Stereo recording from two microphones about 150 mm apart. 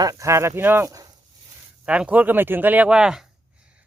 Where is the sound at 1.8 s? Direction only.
10° right (ahead or behind).